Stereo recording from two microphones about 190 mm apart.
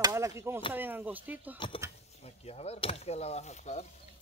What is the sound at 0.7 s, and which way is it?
Speech, 10° right (ahead or behind).